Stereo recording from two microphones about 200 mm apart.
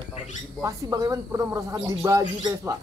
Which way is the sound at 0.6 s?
15° right (ahead or behind).